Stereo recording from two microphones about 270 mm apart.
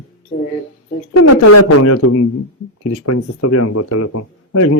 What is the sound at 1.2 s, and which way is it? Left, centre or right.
A man's voice, left.